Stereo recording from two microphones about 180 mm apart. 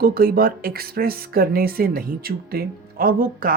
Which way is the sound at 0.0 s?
55° right (ahead or behind).